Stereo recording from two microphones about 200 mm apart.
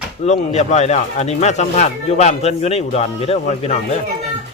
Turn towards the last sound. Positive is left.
turn(degrees=30)  # may be behind; listen again after turning